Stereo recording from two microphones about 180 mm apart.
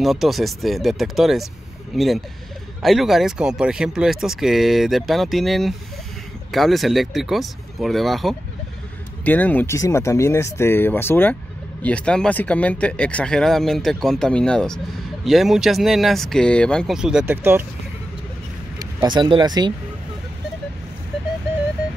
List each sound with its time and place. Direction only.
0.0 s speech: centre (ahead or behind)
18.8 s speech: 20° right (ahead or behind)